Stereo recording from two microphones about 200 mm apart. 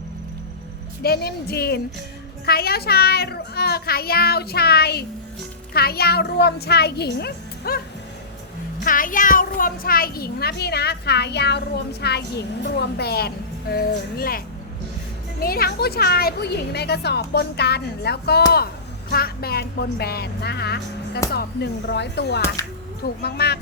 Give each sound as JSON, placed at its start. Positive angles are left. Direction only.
{"t": 1.0, "sound": "a child's voice", "side_deg": 50}
{"t": 8.8, "sound": "a child's voice", "side_deg": 45}
{"t": 22.6, "sound": "speech", "side_deg": 15}
{"t": 23.2, "sound": "speech", "side_deg": 55}